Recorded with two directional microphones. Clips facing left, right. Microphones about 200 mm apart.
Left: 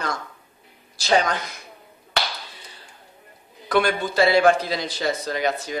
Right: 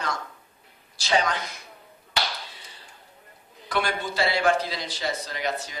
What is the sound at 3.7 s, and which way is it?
A man's voice, 50° left (ahead or behind).